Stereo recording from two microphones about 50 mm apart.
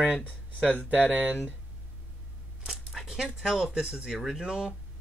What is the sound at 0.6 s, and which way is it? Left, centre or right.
Speech, right.